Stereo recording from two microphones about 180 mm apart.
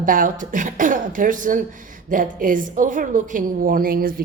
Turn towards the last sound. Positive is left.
turn(degrees=-55)  # may be behind; listen again after turning